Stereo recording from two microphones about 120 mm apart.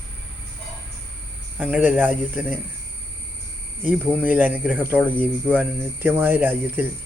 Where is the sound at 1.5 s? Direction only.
10° right (ahead or behind).